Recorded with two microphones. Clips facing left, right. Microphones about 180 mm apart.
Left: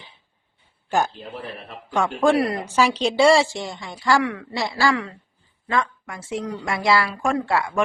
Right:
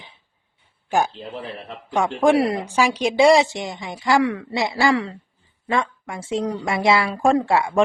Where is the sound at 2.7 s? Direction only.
10° right (ahead or behind).